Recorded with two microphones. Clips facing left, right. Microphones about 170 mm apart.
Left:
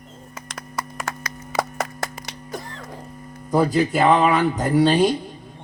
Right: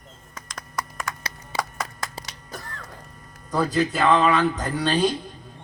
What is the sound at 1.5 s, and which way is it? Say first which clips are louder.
Clapping: left 5 dB; 30° right (ahead or behind).